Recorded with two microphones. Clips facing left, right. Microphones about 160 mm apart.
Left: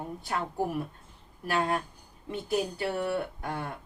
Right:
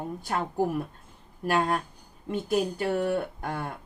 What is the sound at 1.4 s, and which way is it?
A woman's voice, 45° right (ahead or behind).